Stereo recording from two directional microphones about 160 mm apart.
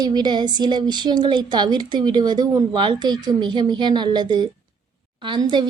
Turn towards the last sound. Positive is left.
turn(degrees=-30)  # may be behind; listen again after turning